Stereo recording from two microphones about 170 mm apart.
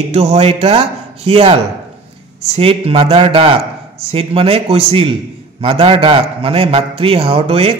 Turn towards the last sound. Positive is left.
turn(degrees=-35)  # may be behind; listen again after turning